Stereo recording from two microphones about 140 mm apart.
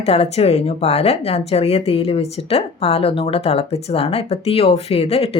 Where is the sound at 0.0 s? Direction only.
45° left (ahead or behind).